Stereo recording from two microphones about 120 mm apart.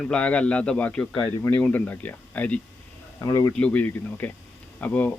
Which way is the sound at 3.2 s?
30° left (ahead or behind).